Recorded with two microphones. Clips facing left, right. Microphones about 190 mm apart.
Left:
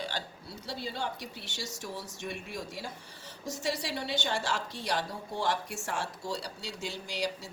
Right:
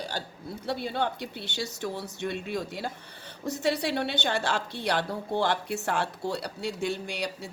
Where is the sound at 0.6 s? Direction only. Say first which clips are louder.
Right 7 dB; 60° right (ahead or behind).